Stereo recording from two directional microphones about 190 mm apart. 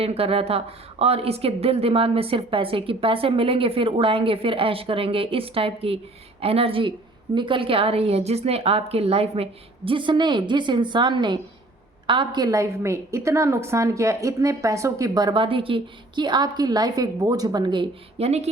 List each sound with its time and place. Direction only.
0.0 s a woman's voice: 30° right (ahead or behind)